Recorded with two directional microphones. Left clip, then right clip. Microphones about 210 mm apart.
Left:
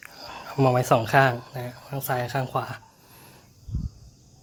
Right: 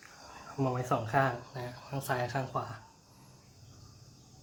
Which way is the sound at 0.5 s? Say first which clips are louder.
Left 12 dB; 50° left (ahead or behind).